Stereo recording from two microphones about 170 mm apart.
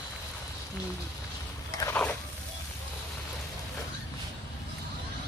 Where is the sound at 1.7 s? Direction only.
20° left (ahead or behind).